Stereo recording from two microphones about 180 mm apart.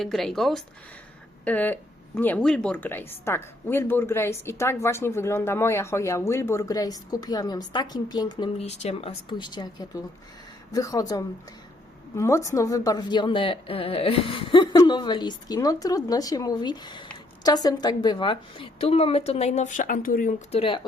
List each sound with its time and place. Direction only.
0.0 s a woman's voice: centre (ahead or behind); by 8.4 s 25° left (ahead or behind)
8.5 s a woman's voice: 35° left (ahead or behind)
20.5 s a woman's voice: 30° left (ahead or behind)